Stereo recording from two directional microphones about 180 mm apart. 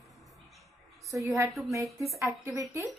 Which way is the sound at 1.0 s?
15° right (ahead or behind).